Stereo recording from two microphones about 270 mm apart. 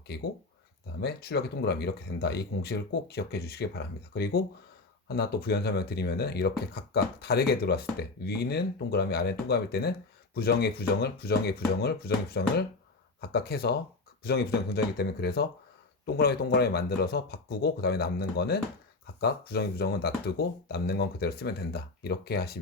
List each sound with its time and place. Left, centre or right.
0.1 s speech: left